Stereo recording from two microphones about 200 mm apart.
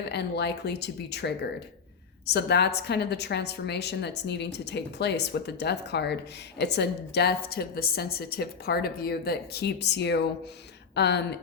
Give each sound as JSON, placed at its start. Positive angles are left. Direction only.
{"t": 0.1, "sound": "a woman's voice", "side_deg": 55}